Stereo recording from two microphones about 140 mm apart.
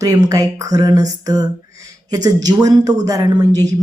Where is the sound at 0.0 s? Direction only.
25° right (ahead or behind).